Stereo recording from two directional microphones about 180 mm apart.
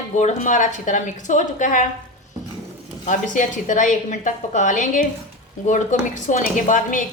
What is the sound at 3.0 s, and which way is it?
Speech, 45° left (ahead or behind).